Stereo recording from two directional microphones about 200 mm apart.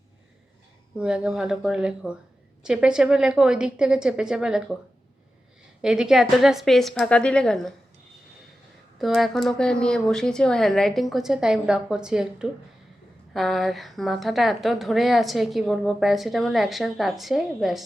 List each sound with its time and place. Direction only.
0.9 s a woman's voice: 5° right (ahead or behind)
5.8 s a woman's voice: 5° right (ahead or behind)
9.0 s a woman's voice: centre (ahead or behind)